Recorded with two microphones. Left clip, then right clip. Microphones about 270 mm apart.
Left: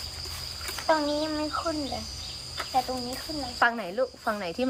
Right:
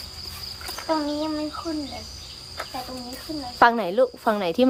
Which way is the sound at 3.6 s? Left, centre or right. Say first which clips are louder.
Right 8 dB; right.